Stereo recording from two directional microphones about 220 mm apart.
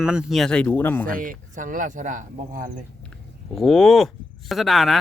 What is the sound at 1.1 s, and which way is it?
Speech, 40° right (ahead or behind).